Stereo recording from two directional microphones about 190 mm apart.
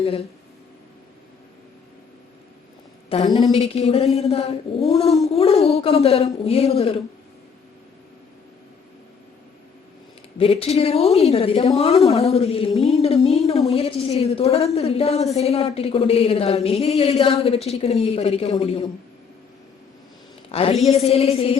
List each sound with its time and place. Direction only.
3.1 s a woman's voice: 30° left (ahead or behind)
10.3 s a woman's voice: 30° left (ahead or behind)
20.5 s a woman's voice: 30° left (ahead or behind)